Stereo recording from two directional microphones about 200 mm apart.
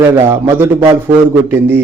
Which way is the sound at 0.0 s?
15° right (ahead or behind).